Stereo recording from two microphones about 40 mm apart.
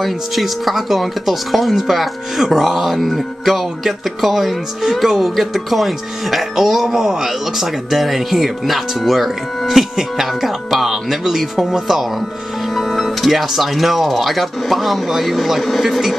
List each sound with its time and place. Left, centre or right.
0.0 s speech: centre